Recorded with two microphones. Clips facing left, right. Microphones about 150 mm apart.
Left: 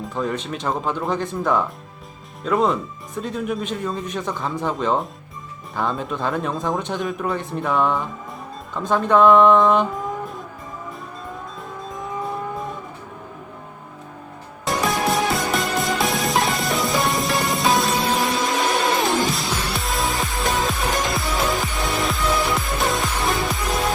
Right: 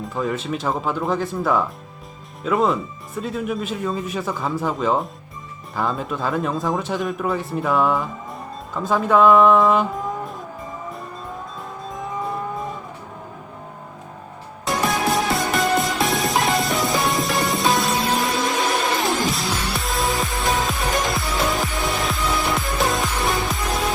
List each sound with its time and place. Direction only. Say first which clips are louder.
0.1 s speech: right 1 dB; centre (ahead or behind)
12.2 s cattle: right 1 dB; centre (ahead or behind)
14.6 s music: even; centre (ahead or behind)